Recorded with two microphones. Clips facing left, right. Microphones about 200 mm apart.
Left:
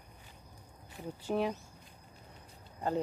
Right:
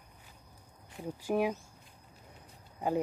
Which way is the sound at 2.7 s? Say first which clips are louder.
Right 2 dB; 10° right (ahead or behind).